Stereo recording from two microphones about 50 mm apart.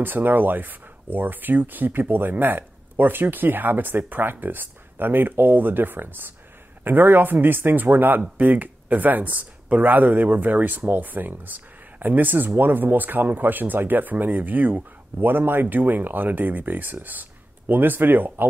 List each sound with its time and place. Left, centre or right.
0.0 s speech: right